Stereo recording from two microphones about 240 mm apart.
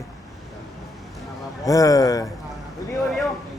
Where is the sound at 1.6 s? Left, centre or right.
Centre.